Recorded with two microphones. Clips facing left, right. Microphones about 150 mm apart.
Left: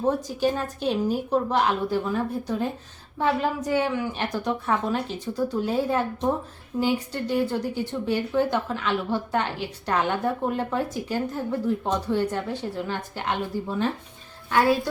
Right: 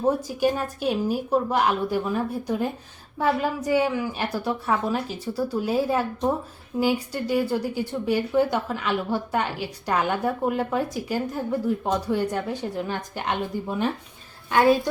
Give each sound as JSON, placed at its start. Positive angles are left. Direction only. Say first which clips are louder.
{"t": 0.0, "sound": "a woman's voice", "louder": "right 1 dB", "side_deg": -10}
{"t": 3.2, "sound": "a woman's voice", "louder": "even", "side_deg": -10}